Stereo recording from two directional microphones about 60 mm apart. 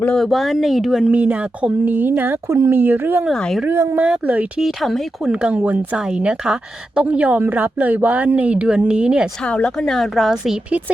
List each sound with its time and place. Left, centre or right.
0.2 s speech: centre
1.0 s speech: right
2.5 s speech: right
3.3 s speech: centre
3.7 s speech: right
3.9 s speech: centre
4.6 s speech: centre
5.2 s speech: centre
9.4 s speech: centre
9.7 s speech: centre